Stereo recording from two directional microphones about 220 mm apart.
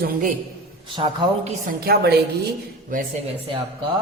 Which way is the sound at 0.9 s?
20° right (ahead or behind).